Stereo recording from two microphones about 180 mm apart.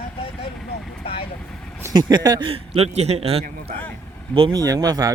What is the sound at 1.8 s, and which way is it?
Speech, 25° right (ahead or behind).